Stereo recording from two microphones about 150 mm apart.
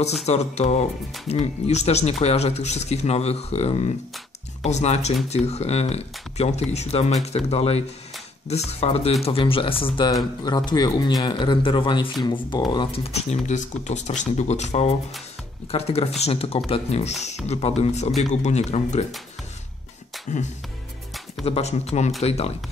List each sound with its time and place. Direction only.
0.0 s speech: 45° left (ahead or behind); by 12.6 s 30° left (ahead or behind)
12.7 s speech: 40° left (ahead or behind)
20.3 s music: 55° left (ahead or behind)
21.5 s speech: 45° left (ahead or behind)